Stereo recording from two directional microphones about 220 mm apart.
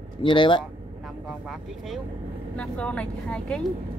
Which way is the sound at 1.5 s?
Centre (ahead or behind).